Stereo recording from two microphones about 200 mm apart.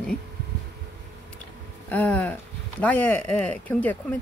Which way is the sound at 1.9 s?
10° left (ahead or behind).